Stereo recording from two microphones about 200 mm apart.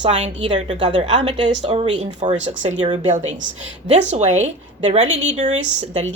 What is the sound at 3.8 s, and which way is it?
Speech, 35° right (ahead or behind).